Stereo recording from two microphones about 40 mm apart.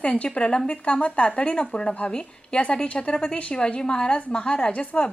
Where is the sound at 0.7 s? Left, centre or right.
Left.